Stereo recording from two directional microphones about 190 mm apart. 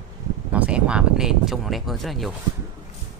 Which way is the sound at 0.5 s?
5° right (ahead or behind).